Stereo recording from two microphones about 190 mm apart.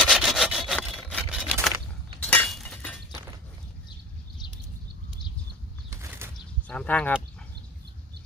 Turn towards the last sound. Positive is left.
turn(degrees=5)  # may be behind; listen again after turning